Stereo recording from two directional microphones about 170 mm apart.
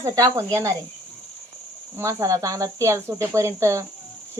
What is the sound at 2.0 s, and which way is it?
Speech, 20° right (ahead or behind).